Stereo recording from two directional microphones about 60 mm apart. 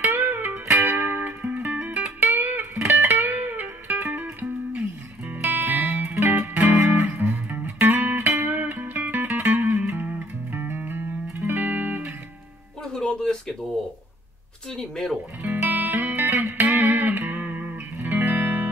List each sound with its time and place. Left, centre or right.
0.0 s music: right
12.8 s music: centre
14.7 s speech: centre
15.4 s music: right